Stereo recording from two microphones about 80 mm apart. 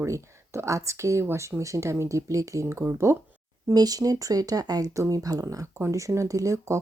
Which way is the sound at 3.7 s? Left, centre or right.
Right.